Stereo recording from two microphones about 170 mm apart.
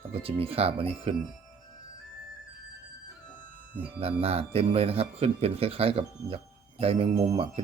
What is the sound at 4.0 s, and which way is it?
Speech, 35° right (ahead or behind).